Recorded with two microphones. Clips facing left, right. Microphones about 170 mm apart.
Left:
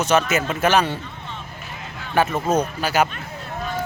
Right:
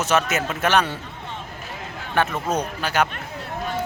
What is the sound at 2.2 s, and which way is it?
Speech, 5° left (ahead or behind).